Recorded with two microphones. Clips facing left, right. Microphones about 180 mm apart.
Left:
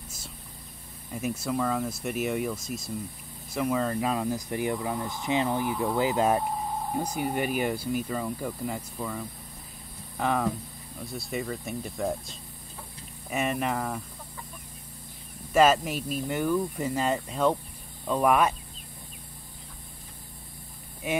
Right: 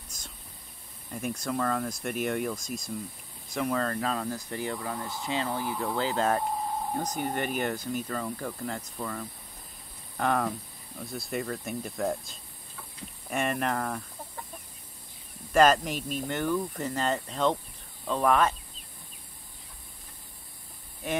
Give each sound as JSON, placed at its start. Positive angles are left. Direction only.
{"t": 1.1, "sound": "speech", "side_deg": 5}
{"t": 15.5, "sound": "speech", "side_deg": 5}